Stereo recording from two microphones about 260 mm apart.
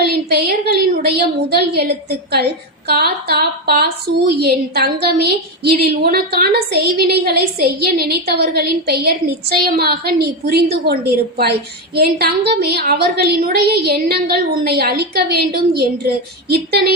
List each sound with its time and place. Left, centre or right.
0.0 s a woman's voice: right